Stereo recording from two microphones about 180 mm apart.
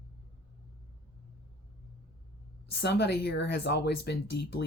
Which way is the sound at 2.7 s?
65° left (ahead or behind).